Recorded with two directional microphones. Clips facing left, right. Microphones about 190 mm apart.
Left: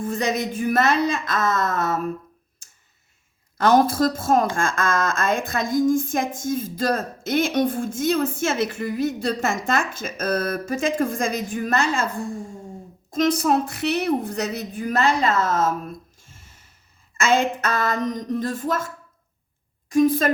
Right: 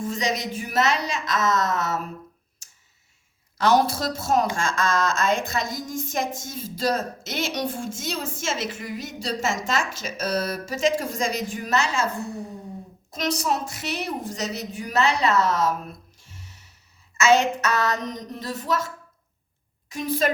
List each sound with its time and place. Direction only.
0.0 s a woman's voice: 55° left (ahead or behind)
3.6 s speech: 50° left (ahead or behind)
13.1 s speech: 50° left (ahead or behind)
16.2 s a sound: 50° left (ahead or behind)
17.2 s speech: 50° left (ahead or behind)
19.9 s speech: 50° left (ahead or behind)